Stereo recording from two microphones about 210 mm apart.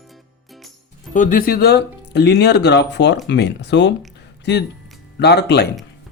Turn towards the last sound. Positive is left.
turn(degrees=50)  # may be behind; listen again after turning